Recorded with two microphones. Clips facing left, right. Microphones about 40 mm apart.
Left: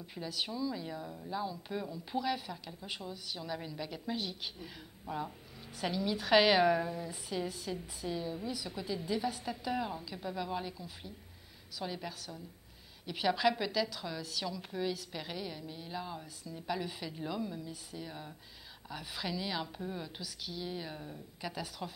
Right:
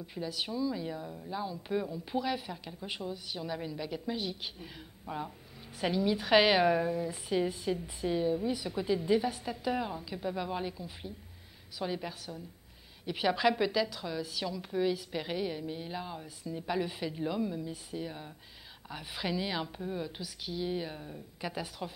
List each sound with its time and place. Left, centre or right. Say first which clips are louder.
0.0 s speech: right 2 dB; centre
7.3 s speech: right 7 dB; right
9.3 s speech: right 3 dB; centre